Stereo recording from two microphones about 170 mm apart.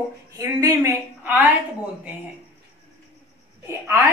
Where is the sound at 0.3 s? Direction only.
20° right (ahead or behind).